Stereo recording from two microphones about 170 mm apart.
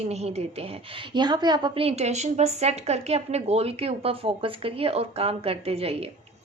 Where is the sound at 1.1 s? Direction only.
25° right (ahead or behind).